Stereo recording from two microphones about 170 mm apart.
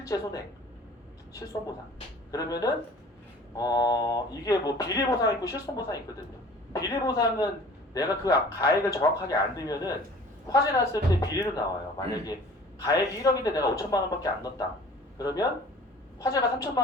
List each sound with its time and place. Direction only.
0.1 s speech: 20° left (ahead or behind)
1.3 s speech: 20° left (ahead or behind)
16.2 s speech: 20° left (ahead or behind)